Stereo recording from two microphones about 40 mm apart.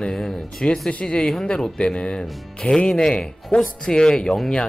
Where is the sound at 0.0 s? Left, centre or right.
Centre.